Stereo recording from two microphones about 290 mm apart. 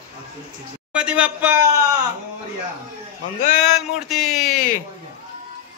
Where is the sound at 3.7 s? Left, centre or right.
Centre.